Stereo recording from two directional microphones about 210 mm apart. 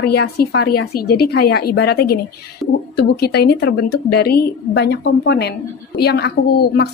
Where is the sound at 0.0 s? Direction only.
50° left (ahead or behind).